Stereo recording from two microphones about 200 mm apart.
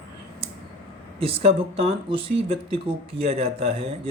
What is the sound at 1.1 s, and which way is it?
A man's voice, 30° right (ahead or behind).